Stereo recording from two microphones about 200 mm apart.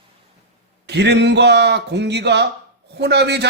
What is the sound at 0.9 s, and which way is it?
Speech, 60° right (ahead or behind).